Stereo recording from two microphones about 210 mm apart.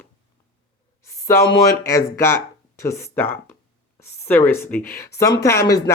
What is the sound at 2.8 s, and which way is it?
Speech, 15° left (ahead or behind).